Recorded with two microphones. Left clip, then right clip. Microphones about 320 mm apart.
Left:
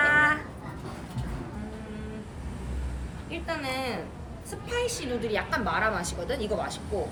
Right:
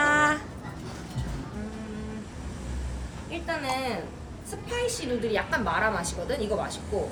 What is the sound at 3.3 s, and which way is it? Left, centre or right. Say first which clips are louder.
A woman's voice: right 2 dB; centre.